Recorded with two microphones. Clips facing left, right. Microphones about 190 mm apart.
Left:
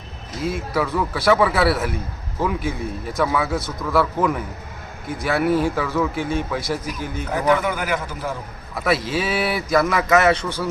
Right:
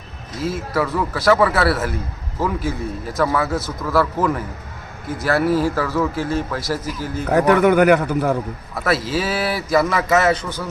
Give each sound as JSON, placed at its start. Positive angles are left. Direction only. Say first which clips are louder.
{"t": 0.4, "sound": "a man's voice", "louder": "right 1 dB", "side_deg": 0}
{"t": 7.3, "sound": "a man's voice", "louder": "right 6 dB", "side_deg": -65}
{"t": 8.7, "sound": "a man's voice", "louder": "right 1 dB", "side_deg": 0}